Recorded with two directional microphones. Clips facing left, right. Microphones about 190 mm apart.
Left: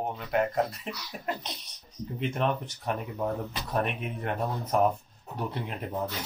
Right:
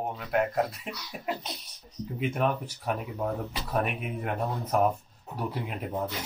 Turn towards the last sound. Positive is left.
turn(degrees=-5)  # may be behind; listen again after turning